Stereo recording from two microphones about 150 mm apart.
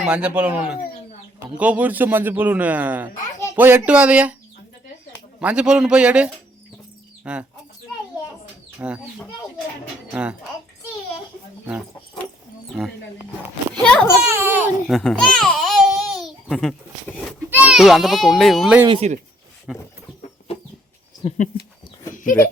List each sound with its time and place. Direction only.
0.0 s a man's voice: 10° right (ahead or behind)
5.4 s a man's voice: 10° right (ahead or behind)
8.8 s a man's voice: 5° right (ahead or behind)
13.8 s a child's voice: 5° left (ahead or behind)
14.3 s a sound: 15° right (ahead or behind)
14.8 s babbling: centre (ahead or behind)
17.5 s a child's voice: 10° right (ahead or behind)
18.9 s speech: 45° right (ahead or behind)
19.7 s speech: centre (ahead or behind)
21.3 s speech: 55° left (ahead or behind)
22.1 s a sound: 60° left (ahead or behind)